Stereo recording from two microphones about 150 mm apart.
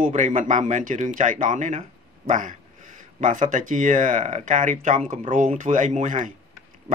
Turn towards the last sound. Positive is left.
turn(degrees=-55)  # may be behind; listen again after turning